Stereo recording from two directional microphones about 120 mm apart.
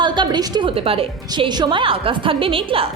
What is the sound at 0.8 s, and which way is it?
Speech, 50° right (ahead or behind).